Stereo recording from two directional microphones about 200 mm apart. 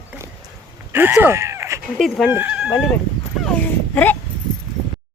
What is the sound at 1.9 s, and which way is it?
Speech, centre (ahead or behind).